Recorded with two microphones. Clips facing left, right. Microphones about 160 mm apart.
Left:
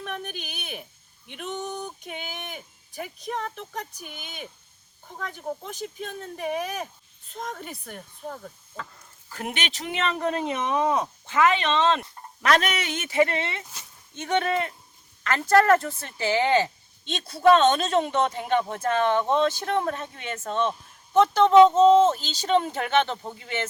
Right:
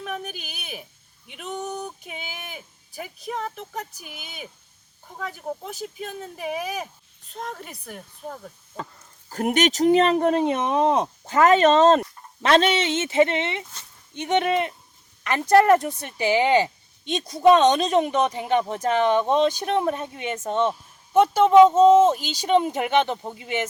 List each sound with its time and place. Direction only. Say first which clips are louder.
0.0 s a sound: right 2 dB; 5° right (ahead or behind)
1.3 s speech: right 1 dB; centre (ahead or behind)
9.3 s speech: right 11 dB; 40° right (ahead or behind)
11.3 s speech: right 6 dB; 40° right (ahead or behind)
12.4 s speech: right 4 dB; 25° right (ahead or behind)